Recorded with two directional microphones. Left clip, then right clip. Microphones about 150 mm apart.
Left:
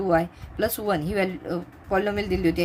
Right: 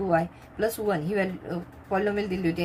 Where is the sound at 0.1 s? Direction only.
45° left (ahead or behind).